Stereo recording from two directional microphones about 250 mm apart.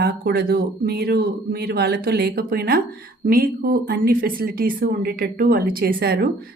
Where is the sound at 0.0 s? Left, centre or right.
Right.